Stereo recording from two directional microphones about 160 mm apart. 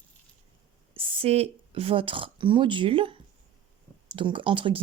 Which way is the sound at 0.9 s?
40° right (ahead or behind).